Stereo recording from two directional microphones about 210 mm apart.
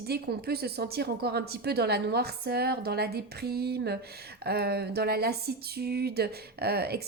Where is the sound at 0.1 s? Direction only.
50° right (ahead or behind).